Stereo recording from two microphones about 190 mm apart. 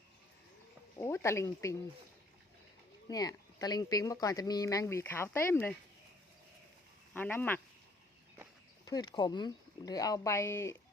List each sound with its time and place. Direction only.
0.9 s speech: 15° left (ahead or behind)
3.1 s speech: 20° left (ahead or behind)
7.1 s speech: 10° left (ahead or behind)
8.8 s speech: 20° left (ahead or behind)